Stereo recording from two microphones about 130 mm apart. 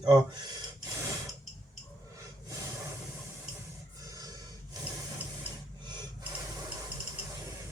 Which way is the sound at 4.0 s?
30° right (ahead or behind).